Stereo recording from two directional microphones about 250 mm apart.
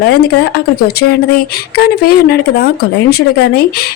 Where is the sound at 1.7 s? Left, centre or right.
Left.